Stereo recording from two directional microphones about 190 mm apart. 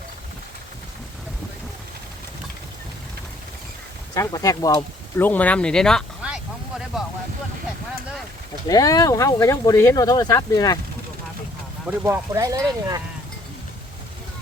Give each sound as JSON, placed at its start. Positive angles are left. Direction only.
{"t": 4.1, "sound": "speech", "side_deg": 20}
{"t": 8.6, "sound": "speech", "side_deg": 20}
{"t": 11.9, "sound": "speech", "side_deg": -10}